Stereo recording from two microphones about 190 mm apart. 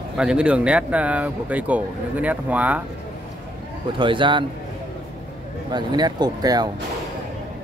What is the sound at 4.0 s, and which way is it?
Speech, 25° right (ahead or behind).